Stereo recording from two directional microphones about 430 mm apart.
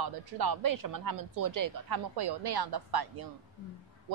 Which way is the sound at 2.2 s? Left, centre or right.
Right.